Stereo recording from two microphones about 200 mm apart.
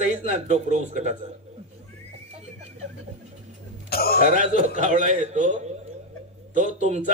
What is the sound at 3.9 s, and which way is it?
Speech, 50° left (ahead or behind).